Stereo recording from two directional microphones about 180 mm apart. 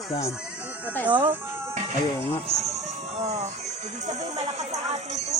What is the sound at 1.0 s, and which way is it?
Speech, 10° right (ahead or behind).